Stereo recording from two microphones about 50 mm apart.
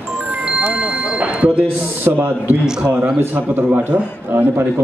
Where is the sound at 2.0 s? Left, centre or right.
Right.